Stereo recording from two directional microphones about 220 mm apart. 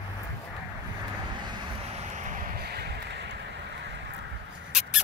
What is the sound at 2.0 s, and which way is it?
Vehicle, 35° right (ahead or behind).